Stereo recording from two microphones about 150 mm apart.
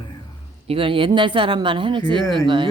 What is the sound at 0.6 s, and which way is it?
Speech, 40° right (ahead or behind).